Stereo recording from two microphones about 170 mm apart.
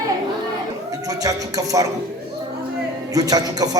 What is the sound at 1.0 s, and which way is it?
Music, 20° right (ahead or behind).